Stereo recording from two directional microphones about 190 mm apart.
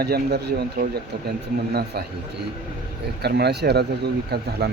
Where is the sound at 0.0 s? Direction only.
55° right (ahead or behind).